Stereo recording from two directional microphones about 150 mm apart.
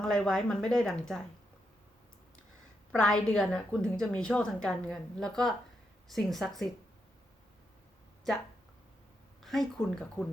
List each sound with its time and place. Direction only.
0.0 s a woman's voice: 5° left (ahead or behind)
2.9 s a woman's voice: 5° left (ahead or behind)
9.4 s a woman's voice: centre (ahead or behind)